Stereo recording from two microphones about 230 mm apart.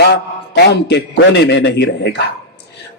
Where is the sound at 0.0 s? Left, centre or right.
Left.